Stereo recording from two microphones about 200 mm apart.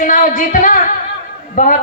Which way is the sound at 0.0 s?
40° left (ahead or behind).